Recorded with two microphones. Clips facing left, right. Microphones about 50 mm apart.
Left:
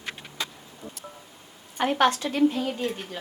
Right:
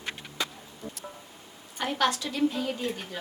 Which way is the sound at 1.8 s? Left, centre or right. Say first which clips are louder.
Left 5 dB; left.